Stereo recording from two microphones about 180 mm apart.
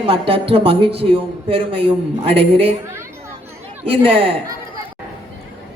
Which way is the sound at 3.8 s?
30° right (ahead or behind).